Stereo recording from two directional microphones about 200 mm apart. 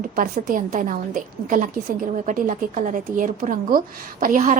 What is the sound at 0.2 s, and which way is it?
A woman's voice, 45° right (ahead or behind).